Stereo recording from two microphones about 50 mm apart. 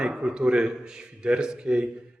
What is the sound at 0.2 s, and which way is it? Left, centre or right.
A man's voice, centre.